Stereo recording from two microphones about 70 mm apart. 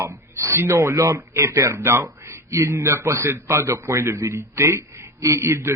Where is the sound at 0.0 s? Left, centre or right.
Right.